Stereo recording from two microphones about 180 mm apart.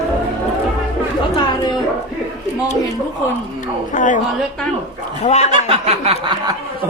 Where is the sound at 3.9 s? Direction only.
45° left (ahead or behind).